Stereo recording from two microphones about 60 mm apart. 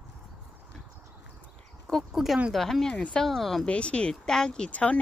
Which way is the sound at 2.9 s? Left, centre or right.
Centre.